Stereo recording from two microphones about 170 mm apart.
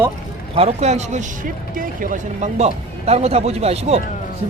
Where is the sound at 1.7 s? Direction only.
55° right (ahead or behind); by 4.0 s 40° right (ahead or behind).